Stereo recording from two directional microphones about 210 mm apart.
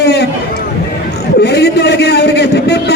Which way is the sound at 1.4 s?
50° left (ahead or behind).